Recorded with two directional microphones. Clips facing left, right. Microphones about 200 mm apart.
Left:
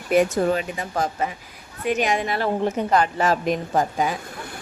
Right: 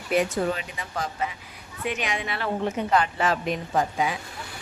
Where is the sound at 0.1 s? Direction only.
45° left (ahead or behind).